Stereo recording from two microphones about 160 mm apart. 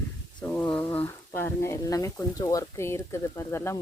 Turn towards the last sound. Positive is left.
turn(degrees=15)  # may be behind; listen again after turning